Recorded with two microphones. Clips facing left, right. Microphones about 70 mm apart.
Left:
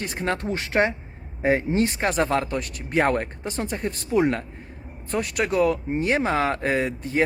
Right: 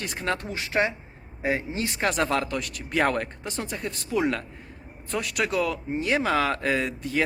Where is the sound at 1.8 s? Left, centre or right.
Left.